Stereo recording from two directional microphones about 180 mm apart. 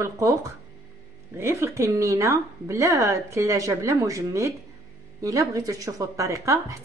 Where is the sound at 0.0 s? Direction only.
15° right (ahead or behind).